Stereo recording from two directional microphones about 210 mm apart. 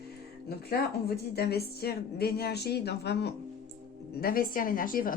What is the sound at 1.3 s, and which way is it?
Speech, 50° left (ahead or behind).